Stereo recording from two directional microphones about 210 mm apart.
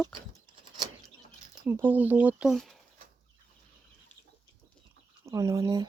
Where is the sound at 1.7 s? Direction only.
10° right (ahead or behind).